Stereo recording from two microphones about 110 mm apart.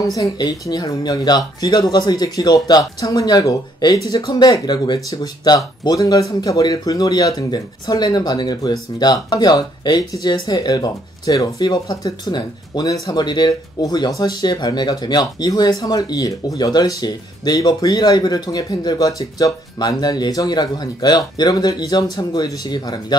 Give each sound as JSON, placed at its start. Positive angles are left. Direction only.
{"t": 0.1, "sound": "speech", "side_deg": 35}